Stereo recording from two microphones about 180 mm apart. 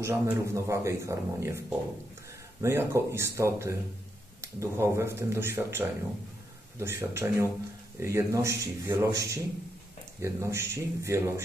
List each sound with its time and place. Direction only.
0.0 s speech: 15° right (ahead or behind)
2.6 s speech: 15° right (ahead or behind)